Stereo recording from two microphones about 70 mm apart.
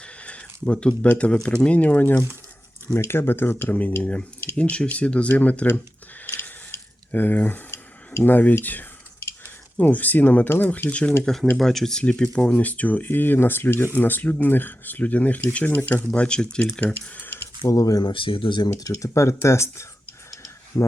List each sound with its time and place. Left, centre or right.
0.0 s a sound: centre
1.0 s speech: centre
4.0 s speech: centre
6.2 s a sound: left
9.7 s speech: left
11.2 s speech: centre
16.8 s speech: left
17.7 s speech: left
18.5 s speech: left
20.3 s tick: left